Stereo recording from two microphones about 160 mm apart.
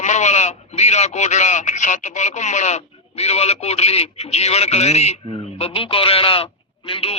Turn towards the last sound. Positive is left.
turn(degrees=35)  # may be behind; listen again after turning